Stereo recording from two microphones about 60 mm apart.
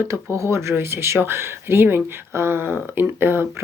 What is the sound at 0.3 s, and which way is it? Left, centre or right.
Speech, right.